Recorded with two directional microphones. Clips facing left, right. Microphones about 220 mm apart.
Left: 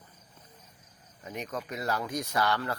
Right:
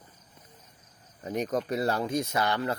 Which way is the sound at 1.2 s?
35° right (ahead or behind).